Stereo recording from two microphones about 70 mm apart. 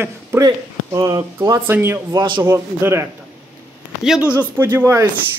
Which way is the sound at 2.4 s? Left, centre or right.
Right.